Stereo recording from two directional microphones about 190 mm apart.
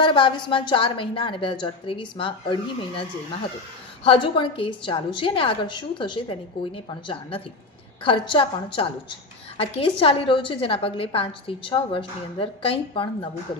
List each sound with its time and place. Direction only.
0.0 s a woman's voice: 25° left (ahead or behind)